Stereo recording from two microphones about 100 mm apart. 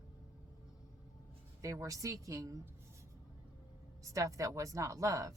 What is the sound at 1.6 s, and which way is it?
Speech, 30° right (ahead or behind).